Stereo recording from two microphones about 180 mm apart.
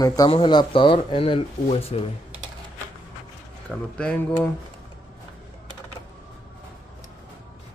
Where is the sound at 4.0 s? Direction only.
5° left (ahead or behind).